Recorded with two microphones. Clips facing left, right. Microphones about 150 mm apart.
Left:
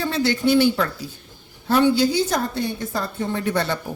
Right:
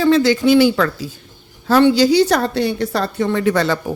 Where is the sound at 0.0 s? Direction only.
90° right.